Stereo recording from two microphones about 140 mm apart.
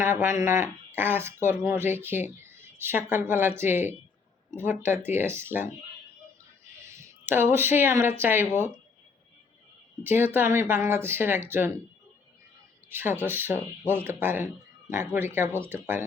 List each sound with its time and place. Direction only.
0.0 s speech: 15° right (ahead or behind)
6.8 s speech: 20° right (ahead or behind)
10.0 s speech: 15° right (ahead or behind)
12.9 s speech: 15° right (ahead or behind)